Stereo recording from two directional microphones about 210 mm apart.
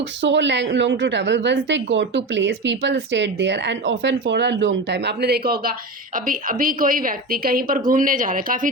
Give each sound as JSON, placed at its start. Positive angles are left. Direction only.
{"t": 0.0, "sound": "a woman's voice", "side_deg": -60}